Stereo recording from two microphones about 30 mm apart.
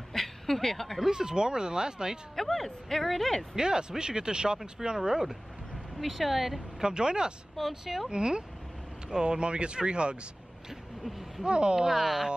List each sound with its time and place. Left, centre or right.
0.1 s a sound: centre
1.1 s speech: right
2.3 s speech: centre
3.5 s speech: right
5.9 s a woman's voice: centre
6.8 s speech: right
7.6 s speech: centre
8.1 s speech: right
10.7 s a sound: centre
11.4 s speech: right
11.9 s speech: centre